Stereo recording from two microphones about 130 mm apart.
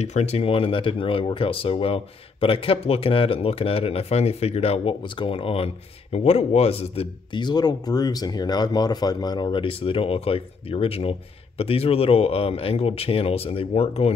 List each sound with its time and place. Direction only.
0.0 s speech: 55° left (ahead or behind)
7.3 s speech: 35° left (ahead or behind); by 14.1 s 50° left (ahead or behind)